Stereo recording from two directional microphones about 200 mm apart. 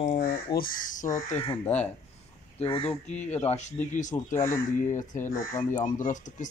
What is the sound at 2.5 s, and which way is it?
Speech, 30° left (ahead or behind).